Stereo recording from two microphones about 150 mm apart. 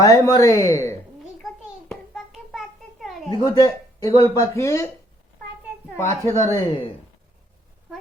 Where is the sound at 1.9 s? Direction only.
Centre (ahead or behind).